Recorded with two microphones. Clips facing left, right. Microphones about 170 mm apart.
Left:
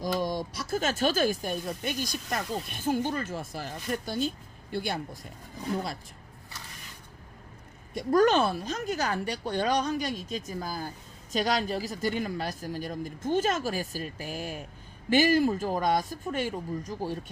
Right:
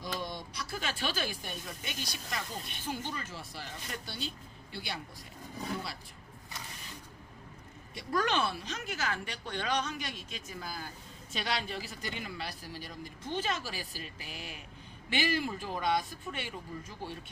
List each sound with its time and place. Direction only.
0.0 s speech: 45° left (ahead or behind)
7.9 s speech: 40° left (ahead or behind)